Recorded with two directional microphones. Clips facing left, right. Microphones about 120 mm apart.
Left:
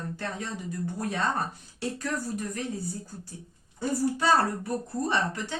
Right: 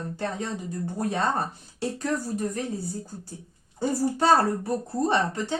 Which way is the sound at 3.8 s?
35° right (ahead or behind).